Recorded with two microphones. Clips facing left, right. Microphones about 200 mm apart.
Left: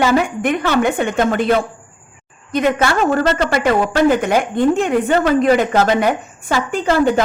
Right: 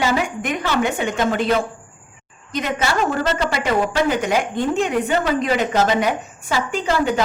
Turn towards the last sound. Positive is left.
turn(degrees=50)  # may be behind; listen again after turning